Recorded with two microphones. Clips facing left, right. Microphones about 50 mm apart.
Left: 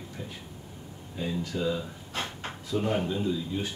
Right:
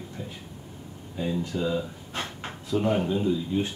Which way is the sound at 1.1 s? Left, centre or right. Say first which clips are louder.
Right 3 dB; centre.